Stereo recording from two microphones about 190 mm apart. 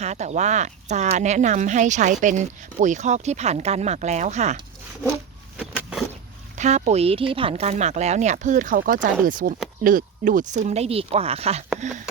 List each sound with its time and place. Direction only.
0.0 s speech: 35° right (ahead or behind)
5.5 s vehicle: centre (ahead or behind)
6.6 s speech: 40° right (ahead or behind)